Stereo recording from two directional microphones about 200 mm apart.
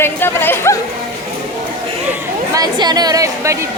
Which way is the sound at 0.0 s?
10° left (ahead or behind).